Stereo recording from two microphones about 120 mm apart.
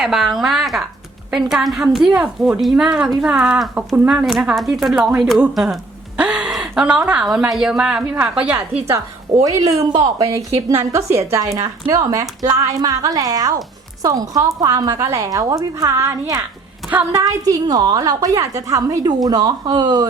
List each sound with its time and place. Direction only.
0.0 s a woman's voice: centre (ahead or behind)
10.2 s a woman's voice: 30° right (ahead or behind)